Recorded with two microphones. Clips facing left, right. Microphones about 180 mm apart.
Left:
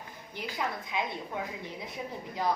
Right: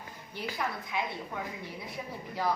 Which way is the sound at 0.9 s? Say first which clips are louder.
Left 2 dB; 15° left (ahead or behind).